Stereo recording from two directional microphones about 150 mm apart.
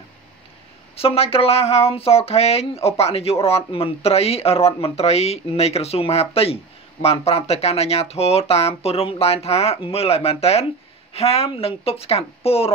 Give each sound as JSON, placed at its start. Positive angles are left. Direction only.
{"t": 0.9, "sound": "a woman's voice", "side_deg": 40}